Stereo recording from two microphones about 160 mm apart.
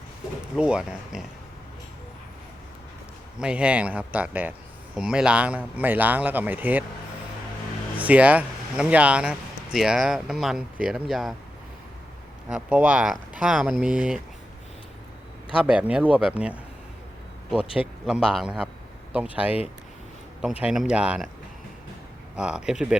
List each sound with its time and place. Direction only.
0.5 s speech: 5° right (ahead or behind)
3.3 s speech: 5° right (ahead or behind)
7.9 s speech: 10° right (ahead or behind)
12.5 s speech: 5° right (ahead or behind)
15.6 s speech: 10° right (ahead or behind)
17.6 s speech: 35° left (ahead or behind)
18.0 s speech: centre (ahead or behind)
22.4 s speech: 5° right (ahead or behind)